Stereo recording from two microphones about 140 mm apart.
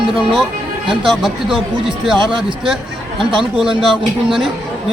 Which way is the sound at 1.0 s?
Centre (ahead or behind).